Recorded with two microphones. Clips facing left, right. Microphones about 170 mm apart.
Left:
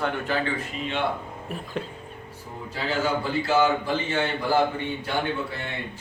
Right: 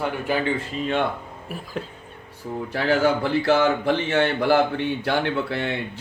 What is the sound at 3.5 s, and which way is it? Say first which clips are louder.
Speech: right 2 dB; 70° right (ahead or behind).